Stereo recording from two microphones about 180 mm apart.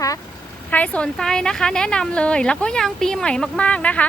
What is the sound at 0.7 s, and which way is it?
A woman's voice, 10° left (ahead or behind).